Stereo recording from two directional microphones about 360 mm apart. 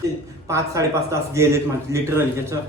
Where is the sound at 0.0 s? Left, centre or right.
Centre.